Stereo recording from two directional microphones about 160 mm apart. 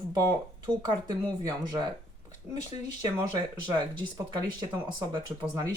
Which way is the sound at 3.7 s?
25° right (ahead or behind).